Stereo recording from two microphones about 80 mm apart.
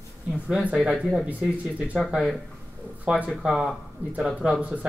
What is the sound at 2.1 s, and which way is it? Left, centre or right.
Speech, centre.